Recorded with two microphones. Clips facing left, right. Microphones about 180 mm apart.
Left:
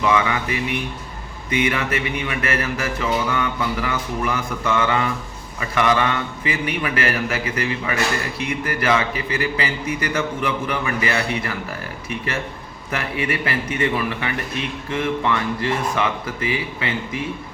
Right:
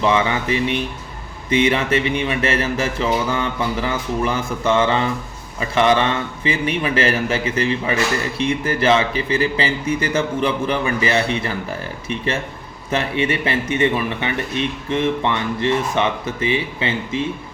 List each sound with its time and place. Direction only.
0.0 s a man's voice: 30° right (ahead or behind)